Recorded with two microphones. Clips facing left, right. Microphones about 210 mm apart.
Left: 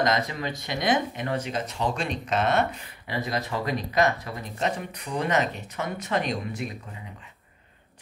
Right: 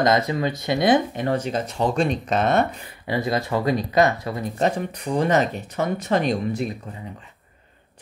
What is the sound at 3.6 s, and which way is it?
Speech, 30° right (ahead or behind).